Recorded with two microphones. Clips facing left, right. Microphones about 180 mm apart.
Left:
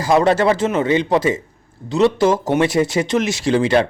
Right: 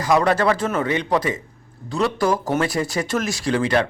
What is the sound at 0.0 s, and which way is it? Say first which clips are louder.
Speech: left 3 dB; 25° left (ahead or behind).